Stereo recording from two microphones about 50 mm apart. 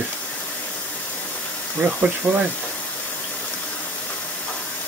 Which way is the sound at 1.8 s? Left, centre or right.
Centre.